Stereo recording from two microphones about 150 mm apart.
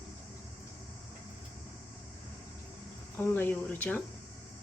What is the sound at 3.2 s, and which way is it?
Speech, 15° left (ahead or behind).